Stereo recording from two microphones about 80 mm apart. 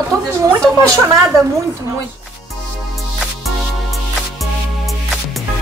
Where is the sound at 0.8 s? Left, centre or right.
Right.